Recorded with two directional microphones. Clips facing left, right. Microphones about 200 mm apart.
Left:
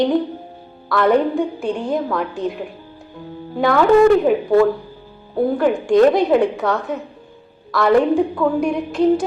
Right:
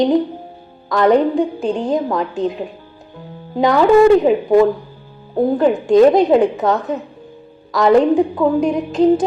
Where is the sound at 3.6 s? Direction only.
15° right (ahead or behind).